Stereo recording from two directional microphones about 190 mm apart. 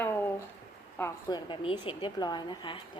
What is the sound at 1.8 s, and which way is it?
A woman's voice, 25° left (ahead or behind).